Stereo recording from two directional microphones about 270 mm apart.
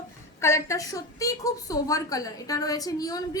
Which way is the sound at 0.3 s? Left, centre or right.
Centre.